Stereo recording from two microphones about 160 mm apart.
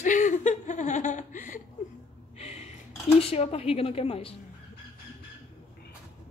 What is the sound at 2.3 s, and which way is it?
Snort, 40° left (ahead or behind).